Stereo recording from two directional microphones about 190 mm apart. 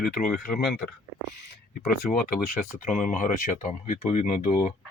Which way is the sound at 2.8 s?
40° left (ahead or behind).